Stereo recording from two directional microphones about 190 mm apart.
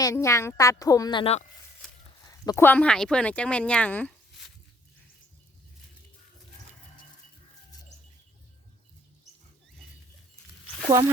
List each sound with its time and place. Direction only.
0.0 s speech: 15° left (ahead or behind); by 1.5 s 30° left (ahead or behind)
2.2 s speech: 15° left (ahead or behind)